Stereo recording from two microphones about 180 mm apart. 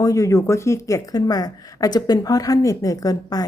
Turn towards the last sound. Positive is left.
turn(degrees=20)  # may be behind; listen again after turning